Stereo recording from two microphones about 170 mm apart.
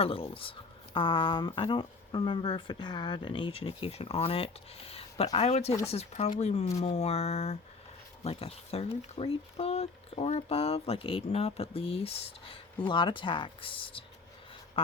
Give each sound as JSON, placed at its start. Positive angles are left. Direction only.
{"t": 0.0, "sound": "speech", "side_deg": 35}